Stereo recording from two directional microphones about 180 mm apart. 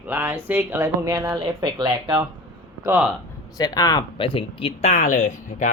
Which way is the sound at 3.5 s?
20° left (ahead or behind).